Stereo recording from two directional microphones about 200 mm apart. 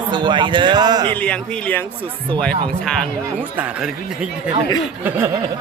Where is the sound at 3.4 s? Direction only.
10° right (ahead or behind).